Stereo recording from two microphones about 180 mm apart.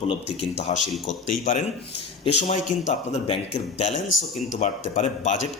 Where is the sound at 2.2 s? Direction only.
40° left (ahead or behind).